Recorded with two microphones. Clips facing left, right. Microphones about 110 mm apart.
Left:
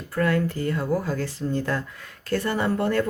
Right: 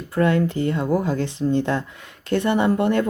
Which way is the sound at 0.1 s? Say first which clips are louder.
Right 4 dB; 20° right (ahead or behind).